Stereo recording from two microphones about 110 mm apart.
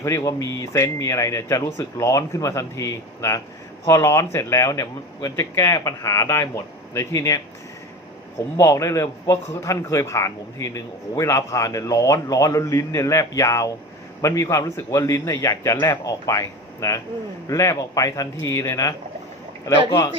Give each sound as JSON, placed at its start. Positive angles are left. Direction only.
{"t": 0.0, "sound": "a man's voice", "side_deg": 30}
{"t": 8.5, "sound": "a man's voice", "side_deg": 25}